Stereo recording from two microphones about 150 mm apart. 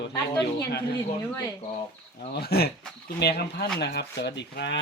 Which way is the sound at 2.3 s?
90° left.